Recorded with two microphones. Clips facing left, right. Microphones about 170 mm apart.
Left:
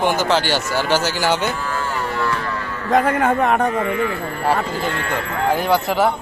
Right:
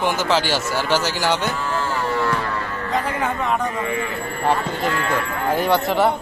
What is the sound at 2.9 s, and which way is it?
Speech, 55° left (ahead or behind).